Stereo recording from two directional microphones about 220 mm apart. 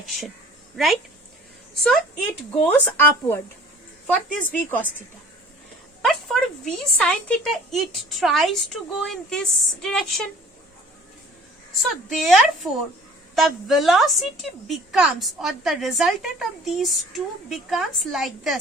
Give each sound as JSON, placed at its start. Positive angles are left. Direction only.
{"t": 2.6, "sound": "a woman's voice", "side_deg": 10}
{"t": 6.0, "sound": "a woman's voice", "side_deg": 0}
{"t": 11.8, "sound": "a woman's voice", "side_deg": 0}